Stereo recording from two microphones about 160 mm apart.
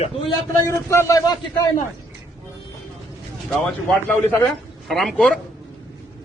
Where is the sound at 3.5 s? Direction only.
5° left (ahead or behind).